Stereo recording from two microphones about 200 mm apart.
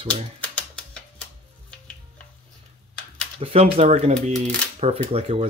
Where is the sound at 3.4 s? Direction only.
30° right (ahead or behind).